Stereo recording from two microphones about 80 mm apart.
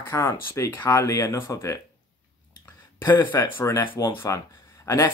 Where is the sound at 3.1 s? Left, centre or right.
Left.